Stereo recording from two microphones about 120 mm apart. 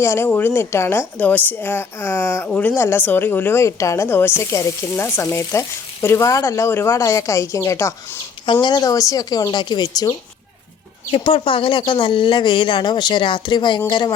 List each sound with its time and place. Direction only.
0.0 s a woman's voice: 20° left (ahead or behind)
11.1 s speech: 50° left (ahead or behind)